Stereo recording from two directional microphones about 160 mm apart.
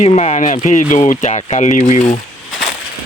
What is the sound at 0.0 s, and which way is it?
Speech, 40° left (ahead or behind).